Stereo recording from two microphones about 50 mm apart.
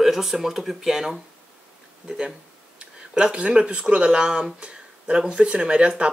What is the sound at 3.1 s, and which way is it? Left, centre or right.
Speech, centre.